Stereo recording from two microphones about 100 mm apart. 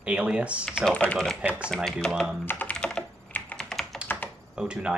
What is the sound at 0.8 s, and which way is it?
Speech, 10° left (ahead or behind).